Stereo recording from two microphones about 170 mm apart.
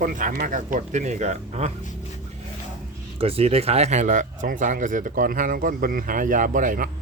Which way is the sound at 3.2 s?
35° right (ahead or behind).